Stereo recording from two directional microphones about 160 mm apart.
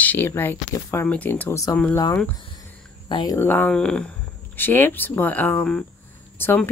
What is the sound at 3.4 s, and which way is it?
Speech, 10° left (ahead or behind).